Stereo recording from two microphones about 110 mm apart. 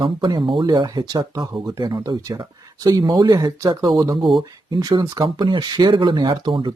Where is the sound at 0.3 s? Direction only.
45° right (ahead or behind).